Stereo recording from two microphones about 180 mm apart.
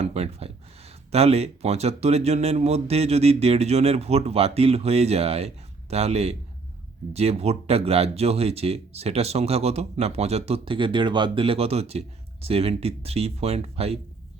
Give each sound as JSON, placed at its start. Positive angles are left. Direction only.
{"t": 0.0, "sound": "speech", "side_deg": -35}